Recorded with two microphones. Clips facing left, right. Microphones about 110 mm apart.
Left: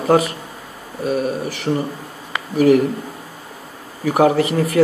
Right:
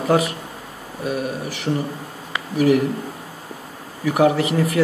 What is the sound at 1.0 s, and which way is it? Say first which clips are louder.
Speech: left 4 dB; 35° left (ahead or behind).